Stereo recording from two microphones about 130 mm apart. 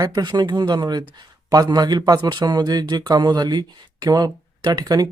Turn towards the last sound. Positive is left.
turn(degrees=-30)  # may be behind; listen again after turning